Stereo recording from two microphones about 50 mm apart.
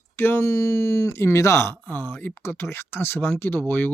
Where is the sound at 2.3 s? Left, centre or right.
Left.